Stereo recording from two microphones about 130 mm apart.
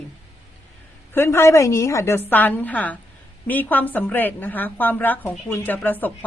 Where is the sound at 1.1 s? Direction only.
20° left (ahead or behind).